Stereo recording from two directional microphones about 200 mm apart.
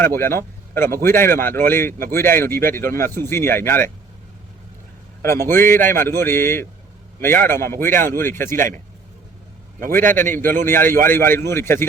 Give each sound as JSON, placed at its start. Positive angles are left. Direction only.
{"t": 0.0, "sound": "a man's voice", "side_deg": 10}
{"t": 5.2, "sound": "a man's voice", "side_deg": 10}
{"t": 9.8, "sound": "a man's voice", "side_deg": -40}
{"t": 10.2, "sound": "a man's voice", "side_deg": 10}